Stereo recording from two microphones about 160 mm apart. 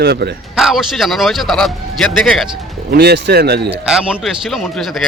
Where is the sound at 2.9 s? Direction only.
90° right.